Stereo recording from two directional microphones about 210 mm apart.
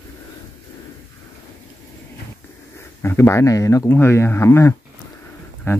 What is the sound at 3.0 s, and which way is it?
Speech, 10° left (ahead or behind).